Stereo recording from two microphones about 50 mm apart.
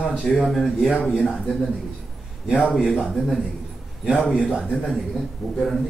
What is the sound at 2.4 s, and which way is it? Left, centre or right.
Speech, centre.